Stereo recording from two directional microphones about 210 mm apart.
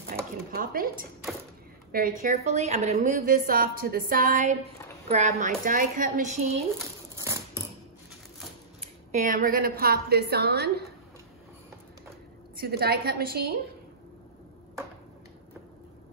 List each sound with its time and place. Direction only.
0.1 s a sound: 35° right (ahead or behind)
0.5 s a woman's voice: 45° right (ahead or behind)
2.4 s speech: 30° right (ahead or behind)
3.0 s a woman's voice: 40° right (ahead or behind)
8.8 s a woman's voice: 35° right (ahead or behind); by 10.7 s 50° right (ahead or behind)
12.5 s a woman's voice: 50° right (ahead or behind)